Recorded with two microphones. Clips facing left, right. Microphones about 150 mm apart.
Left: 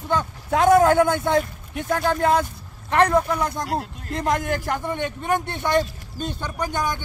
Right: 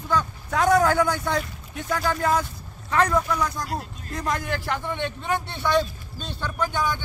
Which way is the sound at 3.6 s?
65° left (ahead or behind).